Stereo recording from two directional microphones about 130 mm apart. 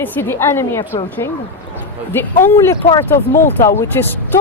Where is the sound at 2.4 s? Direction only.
20° left (ahead or behind).